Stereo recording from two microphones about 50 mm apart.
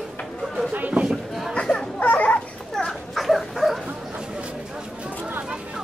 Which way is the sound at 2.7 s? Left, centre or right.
Centre.